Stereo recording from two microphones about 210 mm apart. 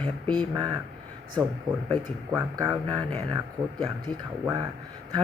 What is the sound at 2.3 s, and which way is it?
Speech, 10° right (ahead or behind).